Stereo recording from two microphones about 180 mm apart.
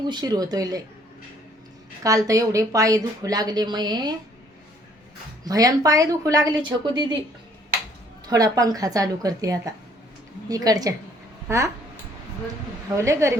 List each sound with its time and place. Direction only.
0.1 s a woman's voice: 20° right (ahead or behind)
2.0 s a woman's voice: 20° right (ahead or behind)
5.5 s a woman's voice: 20° right (ahead or behind)
8.3 s a woman's voice: 20° right (ahead or behind)
13.0 s a woman's voice: 15° right (ahead or behind)